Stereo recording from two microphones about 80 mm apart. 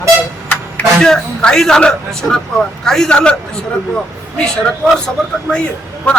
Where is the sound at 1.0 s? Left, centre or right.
Centre.